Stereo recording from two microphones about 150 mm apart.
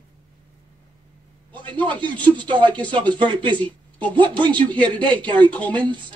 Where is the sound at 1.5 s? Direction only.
30° right (ahead or behind).